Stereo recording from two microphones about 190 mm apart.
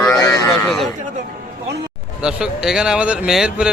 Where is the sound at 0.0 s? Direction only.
15° left (ahead or behind).